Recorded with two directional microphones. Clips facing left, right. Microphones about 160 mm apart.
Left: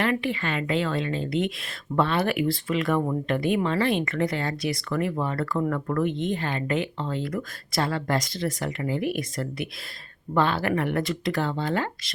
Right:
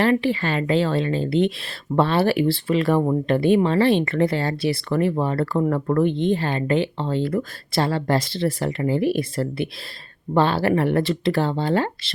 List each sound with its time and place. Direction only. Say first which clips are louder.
0.0 s speech: right 6 dB; 35° right (ahead or behind)